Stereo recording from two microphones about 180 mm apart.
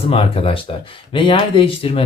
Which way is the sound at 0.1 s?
30° left (ahead or behind).